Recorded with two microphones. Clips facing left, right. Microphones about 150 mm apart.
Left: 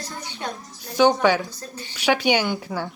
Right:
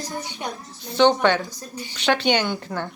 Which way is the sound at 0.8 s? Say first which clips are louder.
Even; 10° left (ahead or behind).